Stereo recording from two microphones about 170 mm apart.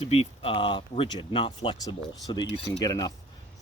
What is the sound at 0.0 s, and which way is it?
Speech, 35° left (ahead or behind).